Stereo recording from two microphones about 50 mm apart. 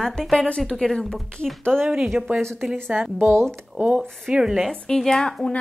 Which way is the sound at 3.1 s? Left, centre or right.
Right.